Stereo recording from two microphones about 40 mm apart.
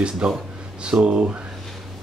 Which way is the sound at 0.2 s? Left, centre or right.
Centre.